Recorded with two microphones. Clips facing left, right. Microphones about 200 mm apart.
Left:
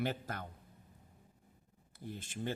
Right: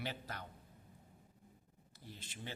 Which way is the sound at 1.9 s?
50° left (ahead or behind).